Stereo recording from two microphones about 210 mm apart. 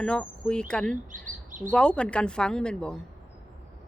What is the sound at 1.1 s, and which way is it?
Chirp, 40° right (ahead or behind).